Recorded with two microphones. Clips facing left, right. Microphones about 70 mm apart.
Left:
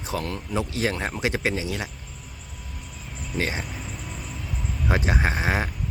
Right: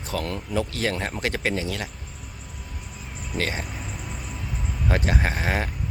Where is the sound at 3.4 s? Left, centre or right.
Centre.